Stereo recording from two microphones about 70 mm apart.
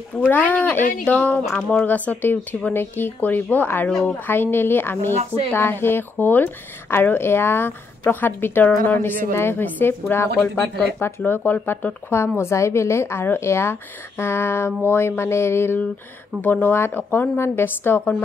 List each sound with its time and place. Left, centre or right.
0.3 s a woman's voice: left
2.7 s a woman's voice: left
16.3 s speech: left